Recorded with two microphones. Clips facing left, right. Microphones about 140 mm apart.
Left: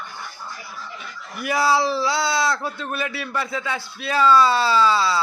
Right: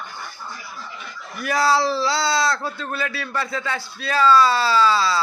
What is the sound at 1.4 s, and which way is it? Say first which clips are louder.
Speech: even; 15° left (ahead or behind).